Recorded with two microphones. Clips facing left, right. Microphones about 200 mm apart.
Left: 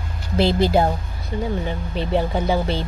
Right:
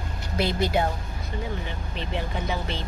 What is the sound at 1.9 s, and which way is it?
Speech, 35° left (ahead or behind).